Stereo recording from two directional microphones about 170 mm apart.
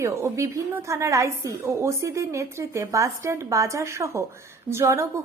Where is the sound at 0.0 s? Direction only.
15° right (ahead or behind).